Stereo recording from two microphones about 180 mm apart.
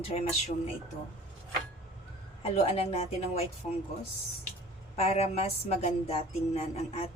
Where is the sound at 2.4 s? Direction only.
35° left (ahead or behind).